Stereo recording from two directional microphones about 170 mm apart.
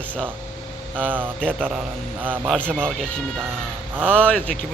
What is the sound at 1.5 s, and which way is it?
Speech, centre (ahead or behind).